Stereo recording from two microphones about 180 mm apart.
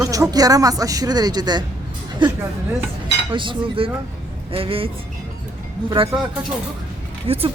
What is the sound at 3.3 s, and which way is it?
Speech, 25° right (ahead or behind).